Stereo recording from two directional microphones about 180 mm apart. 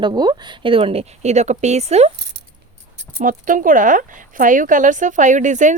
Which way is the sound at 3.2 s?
50° right (ahead or behind).